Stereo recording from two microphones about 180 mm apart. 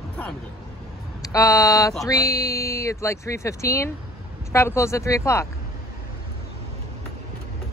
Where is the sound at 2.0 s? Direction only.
20° left (ahead or behind).